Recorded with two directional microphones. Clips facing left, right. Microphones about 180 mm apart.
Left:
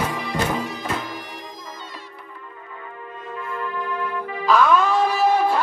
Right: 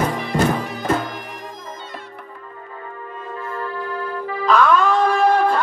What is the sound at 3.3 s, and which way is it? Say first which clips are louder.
Music: right 1 dB; 40° right (ahead or behind).